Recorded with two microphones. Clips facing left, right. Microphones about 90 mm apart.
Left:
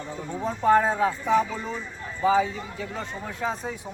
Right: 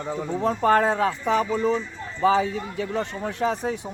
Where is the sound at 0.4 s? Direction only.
75° right (ahead or behind).